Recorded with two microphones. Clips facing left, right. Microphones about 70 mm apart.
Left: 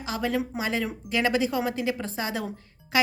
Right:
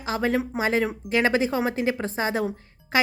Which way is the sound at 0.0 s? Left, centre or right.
Right.